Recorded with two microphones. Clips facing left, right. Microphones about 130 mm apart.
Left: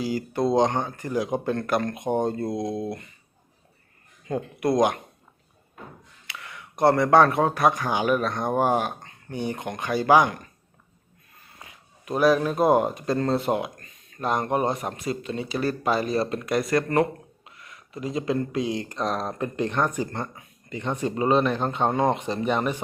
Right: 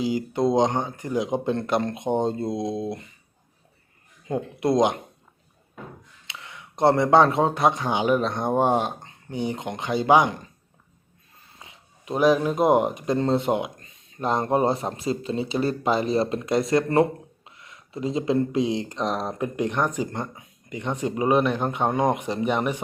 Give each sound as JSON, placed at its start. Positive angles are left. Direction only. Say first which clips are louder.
{"t": 0.0, "sound": "speech", "louder": "right 2 dB", "side_deg": -20}
{"t": 4.3, "sound": "speech", "louder": "right 1 dB", "side_deg": -20}
{"t": 6.2, "sound": "speech", "louder": "left 1 dB", "side_deg": -25}
{"t": 11.6, "sound": "speech", "louder": "even", "side_deg": -20}